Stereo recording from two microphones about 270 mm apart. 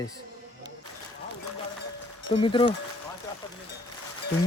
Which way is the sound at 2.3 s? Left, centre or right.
Centre.